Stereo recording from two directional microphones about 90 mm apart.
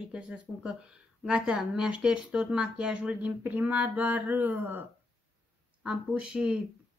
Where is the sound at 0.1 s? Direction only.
10° right (ahead or behind).